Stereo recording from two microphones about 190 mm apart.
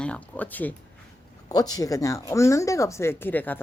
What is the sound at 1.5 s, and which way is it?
A woman's voice, 20° left (ahead or behind).